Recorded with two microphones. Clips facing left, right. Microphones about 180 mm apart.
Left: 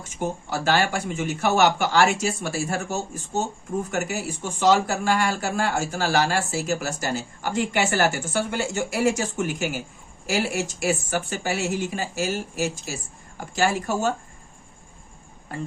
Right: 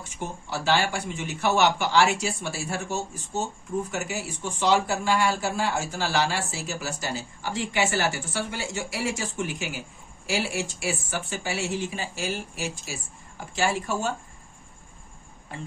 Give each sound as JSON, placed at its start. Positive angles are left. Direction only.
{"t": 0.2, "sound": "speech", "side_deg": 50}